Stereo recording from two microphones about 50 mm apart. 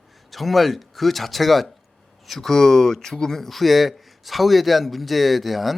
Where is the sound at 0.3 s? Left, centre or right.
Centre.